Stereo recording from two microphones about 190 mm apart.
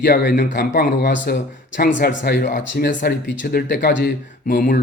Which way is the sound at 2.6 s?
55° left (ahead or behind).